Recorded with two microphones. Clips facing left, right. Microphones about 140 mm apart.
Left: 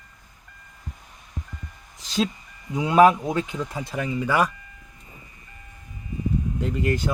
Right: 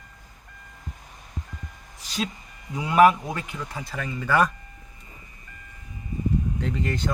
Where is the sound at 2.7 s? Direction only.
25° left (ahead or behind).